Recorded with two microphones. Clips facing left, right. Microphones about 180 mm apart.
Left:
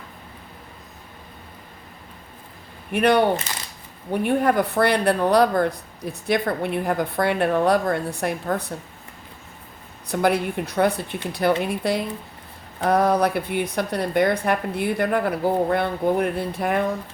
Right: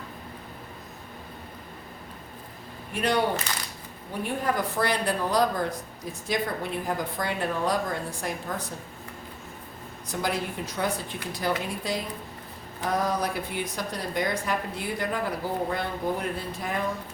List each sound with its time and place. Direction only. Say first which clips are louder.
2.9 s speech: left 7 dB; 65° left (ahead or behind)
10.1 s speech: left 8 dB; 65° left (ahead or behind)